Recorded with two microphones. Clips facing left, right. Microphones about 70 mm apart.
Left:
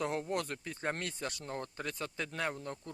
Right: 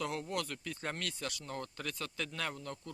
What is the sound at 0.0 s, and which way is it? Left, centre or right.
A man's voice, left.